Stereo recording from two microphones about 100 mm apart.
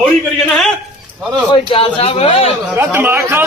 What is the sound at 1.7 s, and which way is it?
Speech, 70° left (ahead or behind).